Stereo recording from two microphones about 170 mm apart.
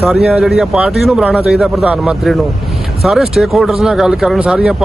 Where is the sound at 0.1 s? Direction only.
Centre (ahead or behind).